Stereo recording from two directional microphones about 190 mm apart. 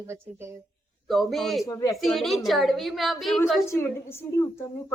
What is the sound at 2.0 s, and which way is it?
A woman's voice, centre (ahead or behind).